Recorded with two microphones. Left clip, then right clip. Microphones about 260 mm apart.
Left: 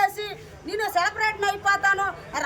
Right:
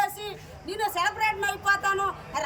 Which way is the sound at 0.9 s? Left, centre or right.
Centre.